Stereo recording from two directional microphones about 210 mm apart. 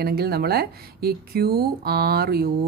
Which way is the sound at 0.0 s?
50° right (ahead or behind).